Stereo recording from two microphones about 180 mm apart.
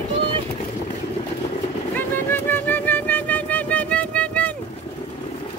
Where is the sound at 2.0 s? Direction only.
10° left (ahead or behind).